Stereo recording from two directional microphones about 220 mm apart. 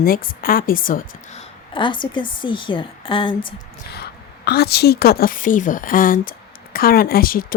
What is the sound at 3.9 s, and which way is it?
Speech, 45° left (ahead or behind).